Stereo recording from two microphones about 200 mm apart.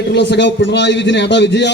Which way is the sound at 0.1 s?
60° left (ahead or behind).